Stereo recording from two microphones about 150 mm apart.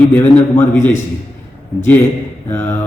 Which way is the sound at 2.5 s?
15° left (ahead or behind).